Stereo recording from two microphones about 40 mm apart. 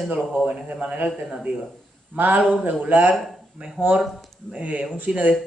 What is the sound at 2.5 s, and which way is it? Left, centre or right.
Speech, right.